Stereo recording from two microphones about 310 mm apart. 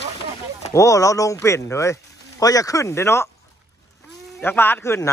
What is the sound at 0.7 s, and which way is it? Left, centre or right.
Speech, centre.